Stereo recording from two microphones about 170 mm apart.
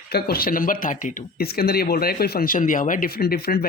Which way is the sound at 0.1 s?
65° left (ahead or behind).